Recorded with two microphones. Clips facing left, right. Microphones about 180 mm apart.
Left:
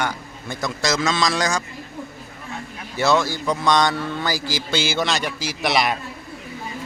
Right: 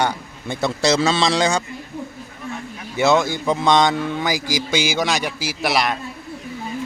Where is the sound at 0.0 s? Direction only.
30° right (ahead or behind).